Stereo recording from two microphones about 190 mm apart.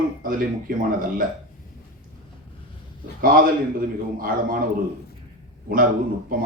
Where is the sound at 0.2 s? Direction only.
45° right (ahead or behind).